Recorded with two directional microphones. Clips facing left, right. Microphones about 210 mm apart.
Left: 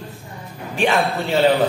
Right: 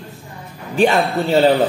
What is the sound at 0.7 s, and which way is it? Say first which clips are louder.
Speech: right 4 dB; 35° right (ahead or behind).